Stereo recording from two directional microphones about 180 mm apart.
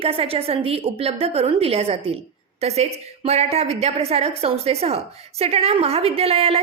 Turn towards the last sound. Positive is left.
turn(degrees=-35)  # may be behind; listen again after turning